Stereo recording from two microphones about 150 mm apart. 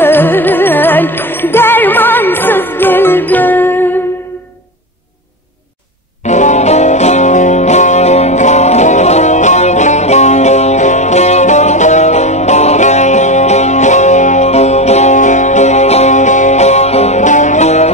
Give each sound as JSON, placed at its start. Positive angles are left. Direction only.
{"t": 0.0, "sound": "music", "side_deg": 15}
{"t": 6.2, "sound": "music", "side_deg": 50}